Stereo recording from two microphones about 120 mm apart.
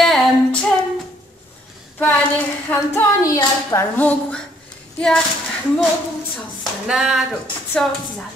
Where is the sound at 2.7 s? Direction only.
15° left (ahead or behind).